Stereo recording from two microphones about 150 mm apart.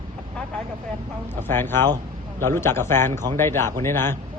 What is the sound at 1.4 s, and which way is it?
Speech, 15° left (ahead or behind).